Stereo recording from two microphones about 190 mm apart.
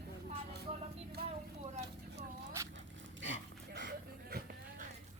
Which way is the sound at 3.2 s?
70° right (ahead or behind).